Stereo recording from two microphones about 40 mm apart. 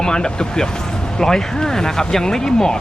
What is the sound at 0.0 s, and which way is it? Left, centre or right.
Speech, centre.